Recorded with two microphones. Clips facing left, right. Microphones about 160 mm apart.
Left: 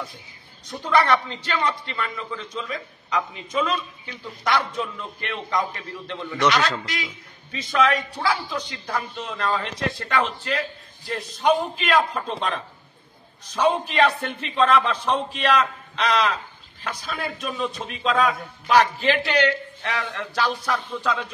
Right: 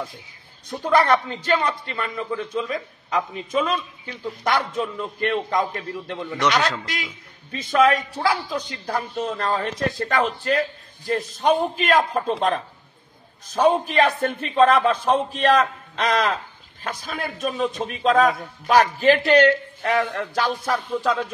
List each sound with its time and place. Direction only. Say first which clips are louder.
0.7 s a man's voice: right 2 dB; 45° right (ahead or behind)
6.4 s a man's voice: even; 15° right (ahead or behind)
7.5 s a man's voice: right 3 dB; 50° right (ahead or behind)